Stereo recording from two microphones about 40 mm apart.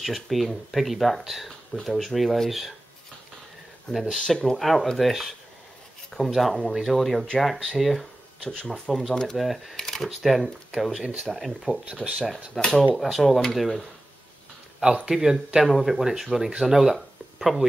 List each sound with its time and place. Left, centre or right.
0.0 s speech: centre
4.1 s speech: centre
9.4 s speech: centre
9.8 s a sound: centre
10.0 s speech: centre
12.5 s speech: centre
13.0 s speech: centre
15.0 s speech: centre